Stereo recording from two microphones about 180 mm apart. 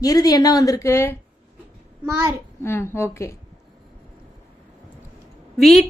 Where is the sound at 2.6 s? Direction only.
15° left (ahead or behind).